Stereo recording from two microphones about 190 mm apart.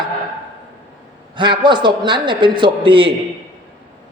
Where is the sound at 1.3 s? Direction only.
25° right (ahead or behind).